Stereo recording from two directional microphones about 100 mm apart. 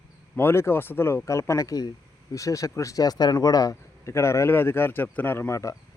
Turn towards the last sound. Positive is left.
turn(degrees=30)  # may be behind; listen again after turning